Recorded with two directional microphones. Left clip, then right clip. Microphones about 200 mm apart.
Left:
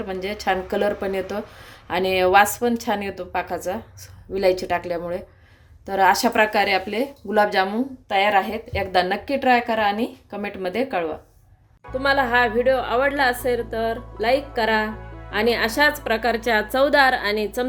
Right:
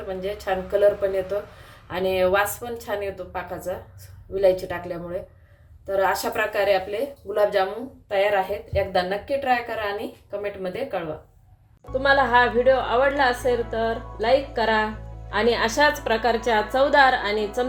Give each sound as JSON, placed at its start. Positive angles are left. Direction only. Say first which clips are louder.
{"t": 0.1, "sound": "speech", "louder": "left 2 dB", "side_deg": 55}
{"t": 1.9, "sound": "speech", "louder": "left 3 dB", "side_deg": 55}
{"t": 11.9, "sound": "a woman's voice", "louder": "right 1 dB", "side_deg": 35}